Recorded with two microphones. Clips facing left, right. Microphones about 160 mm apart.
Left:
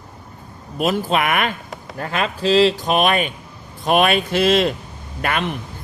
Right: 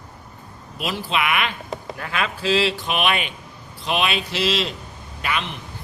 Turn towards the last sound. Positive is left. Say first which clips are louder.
# left 5 dB
turn(degrees=50)  # may be behind; listen again after turning